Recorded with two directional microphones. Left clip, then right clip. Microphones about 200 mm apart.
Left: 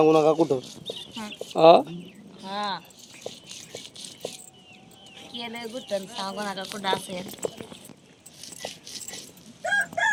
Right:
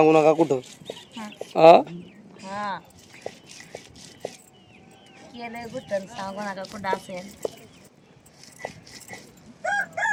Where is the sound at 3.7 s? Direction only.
Centre (ahead or behind).